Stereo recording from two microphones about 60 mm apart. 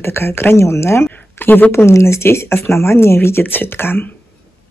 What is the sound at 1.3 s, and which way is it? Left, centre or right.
Speech, left.